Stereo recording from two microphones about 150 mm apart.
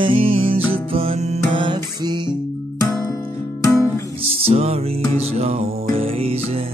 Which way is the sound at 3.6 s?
20° left (ahead or behind).